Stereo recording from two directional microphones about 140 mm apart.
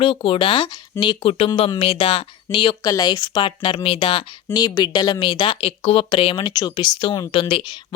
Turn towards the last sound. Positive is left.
turn(degrees=35)  # may be behind; listen again after turning